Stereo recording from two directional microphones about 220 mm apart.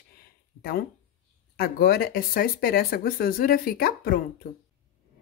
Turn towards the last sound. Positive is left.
turn(degrees=40)  # may be behind; listen again after turning